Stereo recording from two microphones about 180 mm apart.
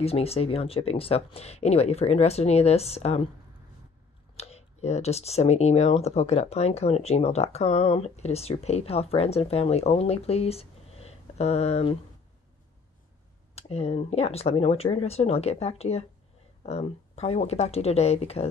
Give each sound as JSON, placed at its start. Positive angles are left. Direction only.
{"t": 0.0, "sound": "speech", "side_deg": 35}
{"t": 4.4, "sound": "speech", "side_deg": 35}
{"t": 13.6, "sound": "speech", "side_deg": 35}